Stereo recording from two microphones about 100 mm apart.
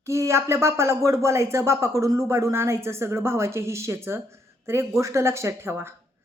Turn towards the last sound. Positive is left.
turn(degrees=-25)  # may be behind; listen again after turning